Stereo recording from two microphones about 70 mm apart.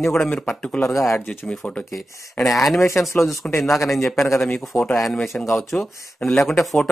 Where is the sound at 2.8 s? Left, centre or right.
Left.